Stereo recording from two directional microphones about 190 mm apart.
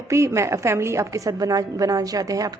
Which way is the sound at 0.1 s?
15° right (ahead or behind).